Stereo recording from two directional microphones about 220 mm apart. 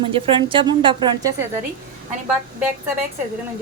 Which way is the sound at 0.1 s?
25° right (ahead or behind).